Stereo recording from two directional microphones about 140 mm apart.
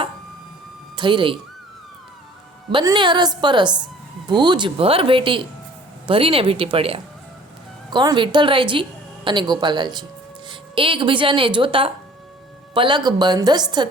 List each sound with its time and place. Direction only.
0.9 s speech: 35° right (ahead or behind)
2.8 s a woman's voice: 30° right (ahead or behind)
7.9 s a woman's voice: 30° right (ahead or behind)